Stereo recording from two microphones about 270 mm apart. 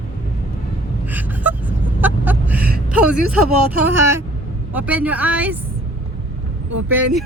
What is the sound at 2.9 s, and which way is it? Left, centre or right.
A woman's voice, centre.